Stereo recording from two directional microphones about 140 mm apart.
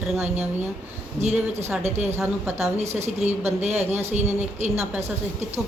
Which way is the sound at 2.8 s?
50° right (ahead or behind).